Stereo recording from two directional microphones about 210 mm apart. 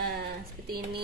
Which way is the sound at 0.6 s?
45° right (ahead or behind).